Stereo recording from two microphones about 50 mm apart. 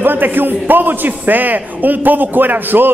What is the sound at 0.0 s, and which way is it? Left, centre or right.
A man's voice, right.